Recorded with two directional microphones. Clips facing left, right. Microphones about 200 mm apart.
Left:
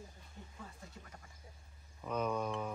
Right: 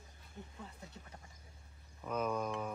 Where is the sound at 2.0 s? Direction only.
5° right (ahead or behind).